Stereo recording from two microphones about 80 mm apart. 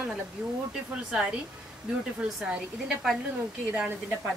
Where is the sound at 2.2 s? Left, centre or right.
Centre.